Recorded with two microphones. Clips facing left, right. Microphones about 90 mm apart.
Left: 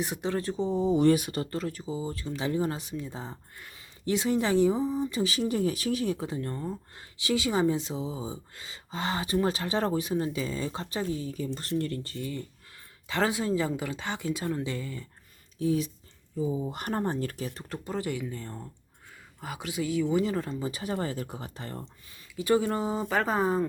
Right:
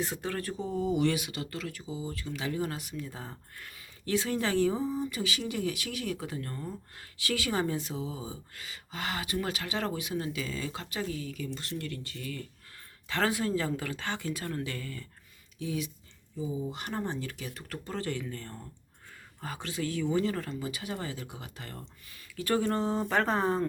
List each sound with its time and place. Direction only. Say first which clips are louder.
0.0 s speech: left 4 dB; 20° left (ahead or behind)
5.1 s a woman's voice: left 6 dB; 35° left (ahead or behind)
15.5 s speech: left 7 dB; 35° left (ahead or behind)
16.4 s speech: left 4 dB; 45° left (ahead or behind); by 17.7 s 30° left (ahead or behind)
17.8 s a woman's voice: left 3 dB; 15° left (ahead or behind); by 21.8 s 30° left (ahead or behind)
22.4 s speech: left 3 dB; 15° left (ahead or behind)